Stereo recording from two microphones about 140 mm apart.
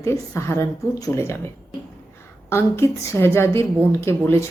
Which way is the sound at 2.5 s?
20° left (ahead or behind).